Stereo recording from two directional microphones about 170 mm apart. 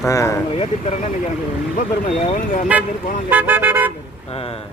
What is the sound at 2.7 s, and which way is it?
Speech, 10° right (ahead or behind).